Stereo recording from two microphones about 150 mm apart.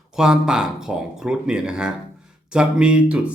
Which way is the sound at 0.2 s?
5° right (ahead or behind).